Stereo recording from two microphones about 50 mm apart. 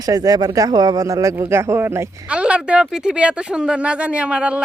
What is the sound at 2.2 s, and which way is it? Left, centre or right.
Speech, right.